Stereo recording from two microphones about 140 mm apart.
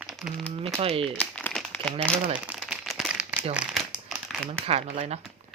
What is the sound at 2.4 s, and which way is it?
Crumpling, 10° right (ahead or behind).